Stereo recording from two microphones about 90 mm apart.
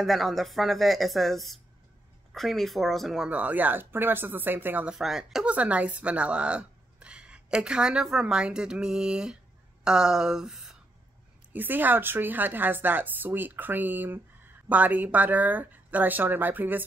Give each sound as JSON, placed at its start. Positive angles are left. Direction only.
{"t": 0.0, "sound": "speech", "side_deg": 0}
{"t": 3.3, "sound": "a woman's voice", "side_deg": -15}
{"t": 4.8, "sound": "speech", "side_deg": -5}
{"t": 5.5, "sound": "speech", "side_deg": -15}
{"t": 11.5, "sound": "a woman's voice", "side_deg": -20}